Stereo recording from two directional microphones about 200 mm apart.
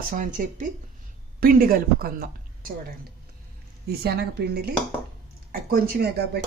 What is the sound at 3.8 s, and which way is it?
Speech, 55° right (ahead or behind).